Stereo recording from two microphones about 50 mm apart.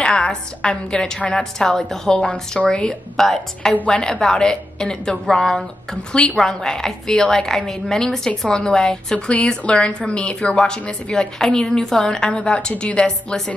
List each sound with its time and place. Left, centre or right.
0.0 s a woman's voice: centre
3.2 s a woman's voice: centre
3.8 s a woman's voice: centre